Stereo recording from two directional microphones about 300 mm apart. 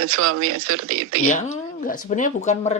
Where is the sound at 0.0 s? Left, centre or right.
Right.